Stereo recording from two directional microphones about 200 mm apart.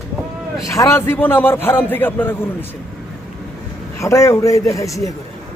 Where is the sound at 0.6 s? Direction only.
15° left (ahead or behind).